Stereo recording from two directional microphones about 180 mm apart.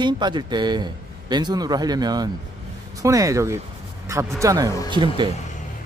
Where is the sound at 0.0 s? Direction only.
25° right (ahead or behind).